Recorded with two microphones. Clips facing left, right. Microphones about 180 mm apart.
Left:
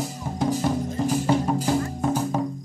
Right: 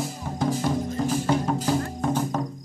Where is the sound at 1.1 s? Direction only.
10° left (ahead or behind).